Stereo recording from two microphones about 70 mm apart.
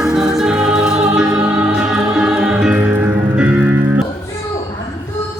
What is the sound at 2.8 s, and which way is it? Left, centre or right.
Music, right.